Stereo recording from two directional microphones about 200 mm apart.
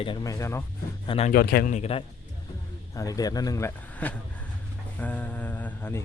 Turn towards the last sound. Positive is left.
turn(degrees=10)  # may be behind; listen again after turning